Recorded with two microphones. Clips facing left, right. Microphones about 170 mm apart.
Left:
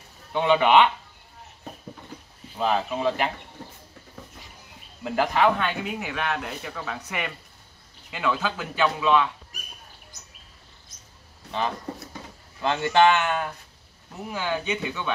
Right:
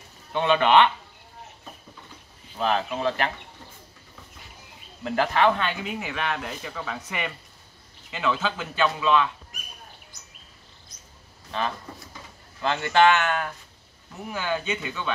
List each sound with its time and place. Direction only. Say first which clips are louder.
0.3 s speech: left 1 dB; 10° left (ahead or behind)
2.5 s speech: left 1 dB; 10° left (ahead or behind)
5.0 s speech: even; 10° left (ahead or behind)
12.6 s speech: even; 20° left (ahead or behind)